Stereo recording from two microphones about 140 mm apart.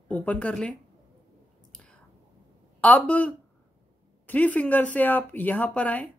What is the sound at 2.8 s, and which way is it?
Speech, 10° left (ahead or behind).